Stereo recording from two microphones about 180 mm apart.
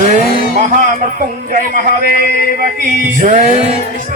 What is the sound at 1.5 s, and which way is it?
Music, 50° right (ahead or behind).